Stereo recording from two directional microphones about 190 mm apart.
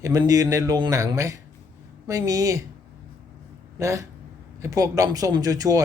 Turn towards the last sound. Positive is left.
turn(degrees=-20)  # may be behind; listen again after turning